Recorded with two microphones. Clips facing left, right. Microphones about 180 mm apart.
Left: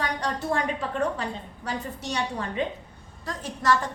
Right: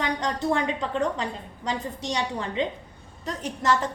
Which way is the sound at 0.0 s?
20° right (ahead or behind).